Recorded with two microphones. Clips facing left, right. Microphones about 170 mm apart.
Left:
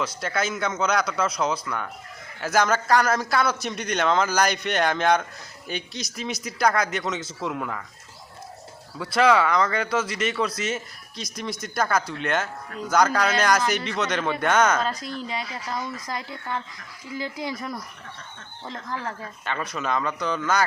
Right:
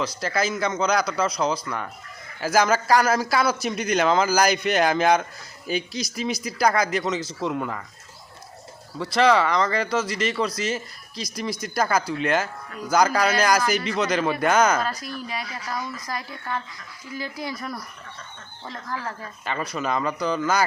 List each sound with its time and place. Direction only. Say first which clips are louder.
0.2 s a man's voice: right 2 dB; centre (ahead or behind)
9.0 s a man's voice: right 1 dB; centre (ahead or behind)
14.8 s a woman's voice: left 1 dB; 20° left (ahead or behind)
19.5 s a man's voice: right 1 dB; centre (ahead or behind)